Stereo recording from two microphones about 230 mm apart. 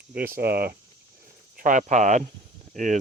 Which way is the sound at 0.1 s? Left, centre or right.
Right.